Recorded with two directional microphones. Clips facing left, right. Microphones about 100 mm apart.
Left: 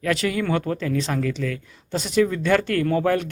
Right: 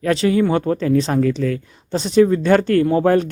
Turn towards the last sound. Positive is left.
turn(degrees=-35)  # may be behind; listen again after turning